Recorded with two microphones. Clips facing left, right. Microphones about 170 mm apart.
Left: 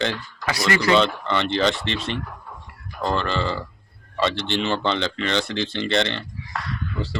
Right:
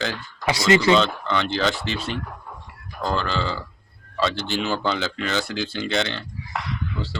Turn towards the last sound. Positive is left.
turn(degrees=0)  # may be behind; listen again after turning